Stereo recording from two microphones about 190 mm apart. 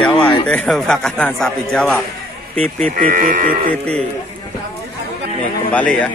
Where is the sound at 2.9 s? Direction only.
45° right (ahead or behind).